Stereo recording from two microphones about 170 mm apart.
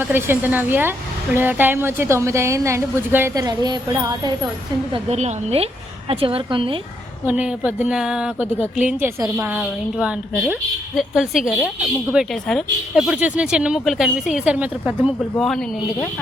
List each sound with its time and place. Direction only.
0.0 s a woman's voice: 10° right (ahead or behind)
4.9 s a woman's voice: 40° right (ahead or behind)
7.3 s a woman's voice: 10° right (ahead or behind)